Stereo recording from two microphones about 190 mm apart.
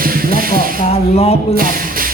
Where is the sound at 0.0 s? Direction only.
50° right (ahead or behind).